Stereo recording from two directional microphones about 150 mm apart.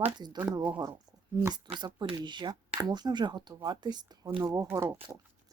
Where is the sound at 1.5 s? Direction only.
30° right (ahead or behind).